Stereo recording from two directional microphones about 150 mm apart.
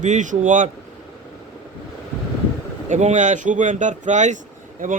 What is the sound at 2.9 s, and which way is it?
A man's voice, 50° right (ahead or behind).